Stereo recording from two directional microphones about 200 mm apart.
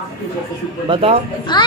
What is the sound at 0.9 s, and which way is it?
Speech, 30° right (ahead or behind).